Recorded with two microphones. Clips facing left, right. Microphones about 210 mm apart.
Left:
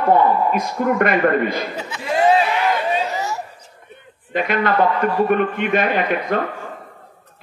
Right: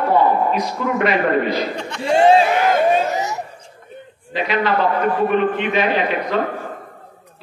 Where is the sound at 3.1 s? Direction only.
20° right (ahead or behind).